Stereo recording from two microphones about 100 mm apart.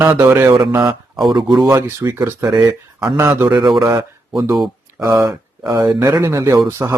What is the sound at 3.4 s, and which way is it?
Speech, 50° right (ahead or behind).